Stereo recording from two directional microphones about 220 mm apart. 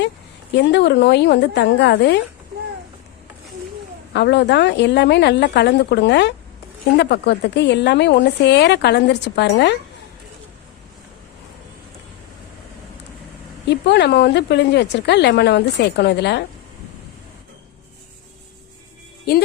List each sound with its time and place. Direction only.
0.5 s a woman's voice: 50° left (ahead or behind)
4.1 s a woman's voice: 50° left (ahead or behind)
13.7 s a woman's voice: 50° left (ahead or behind)